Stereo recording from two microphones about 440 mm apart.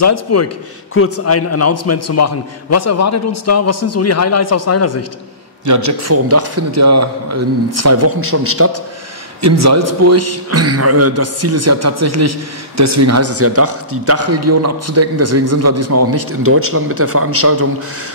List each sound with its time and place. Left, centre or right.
0.0 s a man's voice: left
5.7 s a man's voice: right